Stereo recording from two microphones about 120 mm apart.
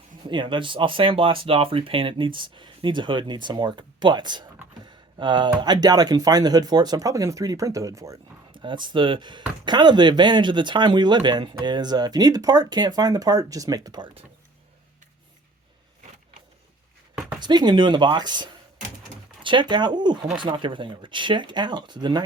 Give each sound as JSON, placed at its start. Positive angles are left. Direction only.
{"t": 0.3, "sound": "speech", "side_deg": -40}
{"t": 8.5, "sound": "speech", "side_deg": -40}
{"t": 17.4, "sound": "speech", "side_deg": -40}